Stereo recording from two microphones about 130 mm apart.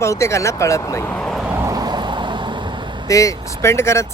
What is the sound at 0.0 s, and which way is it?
Speech, 20° left (ahead or behind).